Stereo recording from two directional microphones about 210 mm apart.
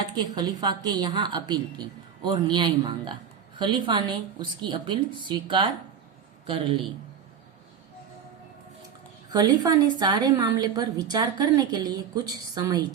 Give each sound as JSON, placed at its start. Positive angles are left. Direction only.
{"t": 0.0, "sound": "a woman's voice", "side_deg": -20}
{"t": 9.3, "sound": "a woman's voice", "side_deg": -20}